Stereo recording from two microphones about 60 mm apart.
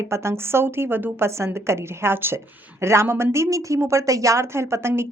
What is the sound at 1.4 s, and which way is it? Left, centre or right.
A woman's voice, right.